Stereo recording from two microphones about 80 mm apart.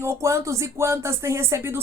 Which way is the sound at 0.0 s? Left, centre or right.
Right.